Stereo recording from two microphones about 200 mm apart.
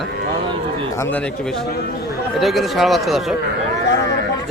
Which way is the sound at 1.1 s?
5° left (ahead or behind).